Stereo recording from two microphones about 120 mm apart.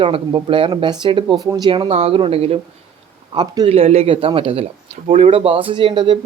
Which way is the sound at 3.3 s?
35° right (ahead or behind).